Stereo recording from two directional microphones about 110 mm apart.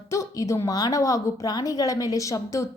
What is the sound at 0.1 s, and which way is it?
A woman's voice, 25° left (ahead or behind).